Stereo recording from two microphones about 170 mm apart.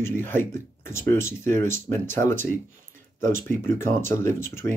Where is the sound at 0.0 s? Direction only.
15° left (ahead or behind).